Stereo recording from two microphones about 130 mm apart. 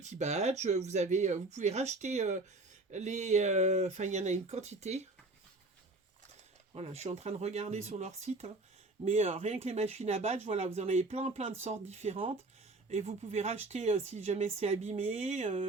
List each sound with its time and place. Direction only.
0.0 s speech: 60° right (ahead or behind)
6.7 s speech: 55° right (ahead or behind)